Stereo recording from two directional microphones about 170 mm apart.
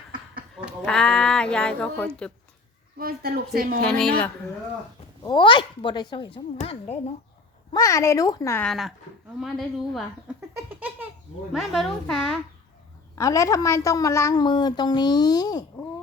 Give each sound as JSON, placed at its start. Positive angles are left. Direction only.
{"t": 0.6, "sound": "speech", "side_deg": 5}
{"t": 3.0, "sound": "speech", "side_deg": -65}
{"t": 3.8, "sound": "speech", "side_deg": 5}
{"t": 5.2, "sound": "a woman's voice", "side_deg": 30}
{"t": 6.6, "sound": "speech", "side_deg": 40}
{"t": 7.7, "sound": "speech", "side_deg": 20}
{"t": 8.6, "sound": "speech", "side_deg": 0}
{"t": 10.7, "sound": "a sound", "side_deg": -10}
{"t": 11.7, "sound": "speech", "side_deg": 0}
{"t": 13.1, "sound": "a woman's voice", "side_deg": 20}